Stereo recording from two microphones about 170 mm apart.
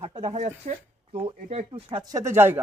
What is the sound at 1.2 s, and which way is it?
Speech, 30° right (ahead or behind).